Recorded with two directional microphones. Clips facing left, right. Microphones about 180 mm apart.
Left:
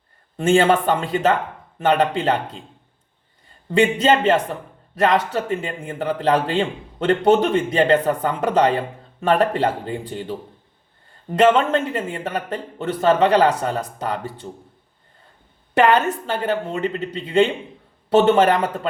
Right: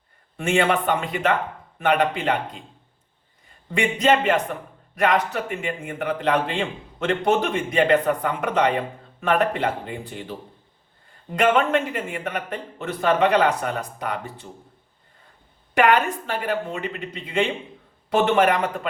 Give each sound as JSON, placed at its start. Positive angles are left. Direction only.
{"t": 0.3, "sound": "a man's voice", "side_deg": 30}
{"t": 4.0, "sound": "a man's voice", "side_deg": 30}
{"t": 11.3, "sound": "a man's voice", "side_deg": 30}
{"t": 16.2, "sound": "a man's voice", "side_deg": 30}